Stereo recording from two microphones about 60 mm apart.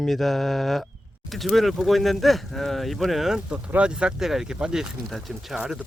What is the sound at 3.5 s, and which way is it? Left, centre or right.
Speech, centre.